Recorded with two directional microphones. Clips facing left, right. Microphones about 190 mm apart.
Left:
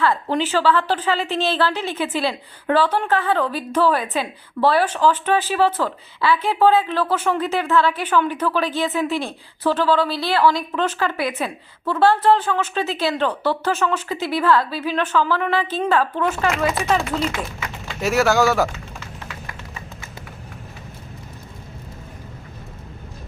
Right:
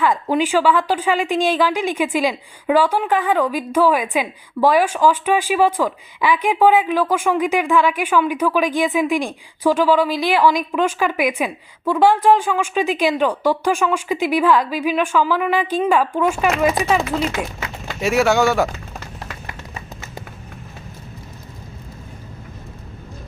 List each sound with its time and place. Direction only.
0.0 s a woman's voice: 15° right (ahead or behind)
18.0 s speech: centre (ahead or behind)
18.9 s music: 40° right (ahead or behind)